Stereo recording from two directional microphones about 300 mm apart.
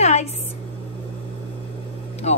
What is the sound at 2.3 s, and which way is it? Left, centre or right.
Speech, left.